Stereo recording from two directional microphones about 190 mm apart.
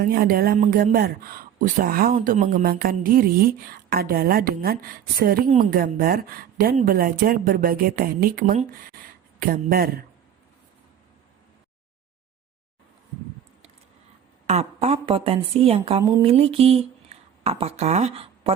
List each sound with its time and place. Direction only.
0.0 s speech: 50° right (ahead or behind)
14.4 s a woman's voice: 35° right (ahead or behind)